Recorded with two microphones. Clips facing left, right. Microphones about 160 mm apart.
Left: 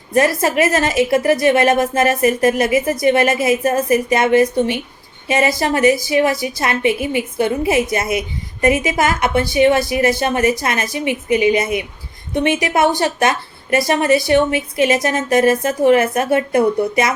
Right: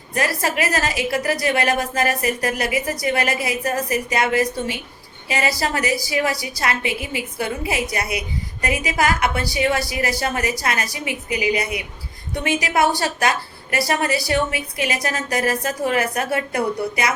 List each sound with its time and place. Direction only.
0.1 s a woman's voice: 25° left (ahead or behind)